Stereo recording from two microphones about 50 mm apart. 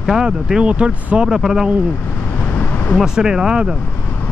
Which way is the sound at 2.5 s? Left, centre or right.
Left.